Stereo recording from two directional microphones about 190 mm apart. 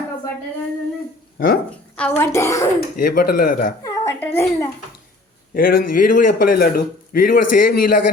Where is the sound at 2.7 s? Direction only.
50° left (ahead or behind).